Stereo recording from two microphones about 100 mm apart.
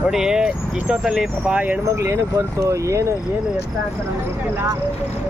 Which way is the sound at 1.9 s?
30° right (ahead or behind).